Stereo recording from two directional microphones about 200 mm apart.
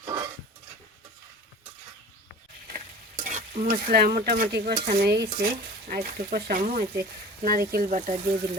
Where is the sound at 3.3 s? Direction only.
45° right (ahead or behind).